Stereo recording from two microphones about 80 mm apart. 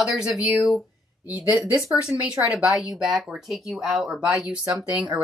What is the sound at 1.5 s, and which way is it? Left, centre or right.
Speech, right.